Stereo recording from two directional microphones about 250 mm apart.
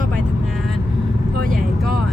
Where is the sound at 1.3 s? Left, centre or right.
Right.